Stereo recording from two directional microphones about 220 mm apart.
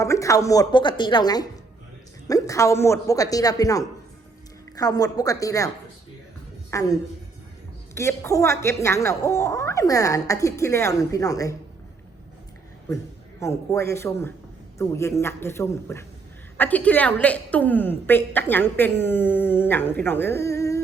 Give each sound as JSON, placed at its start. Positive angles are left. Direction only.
{"t": 0.0, "sound": "a woman's voice", "side_deg": 15}
{"t": 13.4, "sound": "a woman's voice", "side_deg": 10}